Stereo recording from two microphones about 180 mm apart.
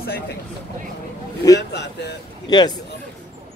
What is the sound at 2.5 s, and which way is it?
Speech, 20° left (ahead or behind).